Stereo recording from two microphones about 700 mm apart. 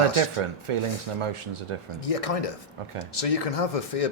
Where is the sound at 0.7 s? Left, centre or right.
Right.